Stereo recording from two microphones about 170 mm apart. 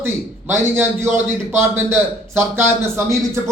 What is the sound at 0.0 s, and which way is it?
A man's voice, 15° right (ahead or behind).